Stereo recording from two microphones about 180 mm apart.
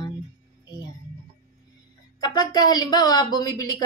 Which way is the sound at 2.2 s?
25° left (ahead or behind).